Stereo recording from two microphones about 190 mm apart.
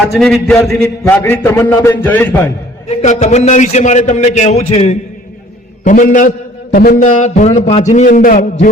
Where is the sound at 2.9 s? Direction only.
35° left (ahead or behind).